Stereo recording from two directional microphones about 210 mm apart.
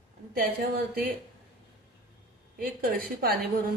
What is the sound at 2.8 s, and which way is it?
Speech, 45° right (ahead or behind).